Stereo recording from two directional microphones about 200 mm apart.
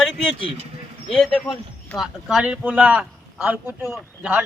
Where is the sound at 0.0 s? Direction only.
5° left (ahead or behind).